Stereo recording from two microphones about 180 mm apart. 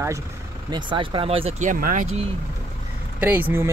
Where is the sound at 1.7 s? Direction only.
50° right (ahead or behind).